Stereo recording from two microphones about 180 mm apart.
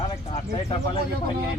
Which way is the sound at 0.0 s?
30° left (ahead or behind).